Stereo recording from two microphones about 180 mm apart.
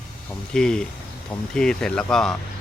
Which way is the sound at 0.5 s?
5° left (ahead or behind).